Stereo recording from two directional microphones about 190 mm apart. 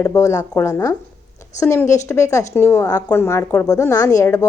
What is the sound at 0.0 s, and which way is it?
A woman's voice, 15° left (ahead or behind).